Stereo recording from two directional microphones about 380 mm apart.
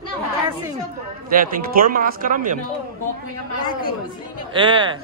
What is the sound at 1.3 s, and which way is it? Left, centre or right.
Speech, right.